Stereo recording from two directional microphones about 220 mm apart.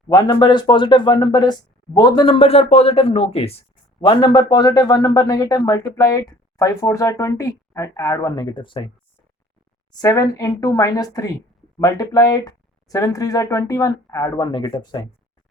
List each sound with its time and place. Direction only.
0.1 s speech: 15° left (ahead or behind)
9.9 s speech: 15° left (ahead or behind)